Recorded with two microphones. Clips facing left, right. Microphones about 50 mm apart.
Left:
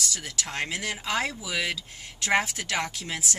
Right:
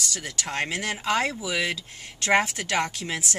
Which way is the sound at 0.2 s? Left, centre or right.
Right.